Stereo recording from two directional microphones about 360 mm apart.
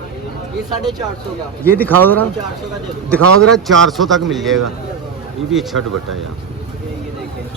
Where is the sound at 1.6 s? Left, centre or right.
Centre.